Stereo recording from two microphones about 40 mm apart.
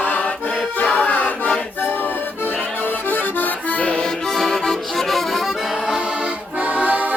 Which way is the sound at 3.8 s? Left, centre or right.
Left.